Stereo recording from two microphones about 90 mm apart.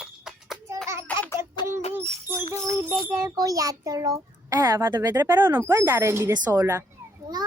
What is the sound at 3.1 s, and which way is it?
A child's voice, 40° right (ahead or behind).